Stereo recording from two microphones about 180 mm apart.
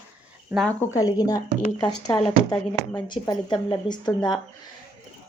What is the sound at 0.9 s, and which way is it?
Speech, 20° left (ahead or behind).